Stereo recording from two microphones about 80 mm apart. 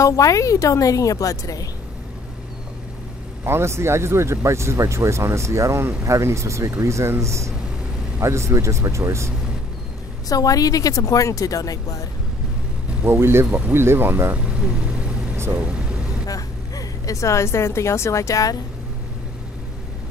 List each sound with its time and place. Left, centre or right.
0.0 s speech: left
3.4 s speech: right
10.2 s speech: left
13.0 s speech: right
14.4 s vehicle: centre
15.5 s speech: centre
16.3 s a woman's voice: left